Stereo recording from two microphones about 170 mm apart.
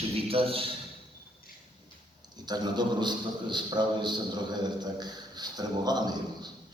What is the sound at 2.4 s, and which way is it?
A man's voice, 25° right (ahead or behind).